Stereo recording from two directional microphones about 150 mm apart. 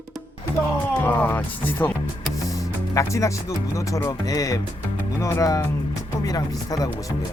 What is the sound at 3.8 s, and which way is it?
Speech, 20° left (ahead or behind).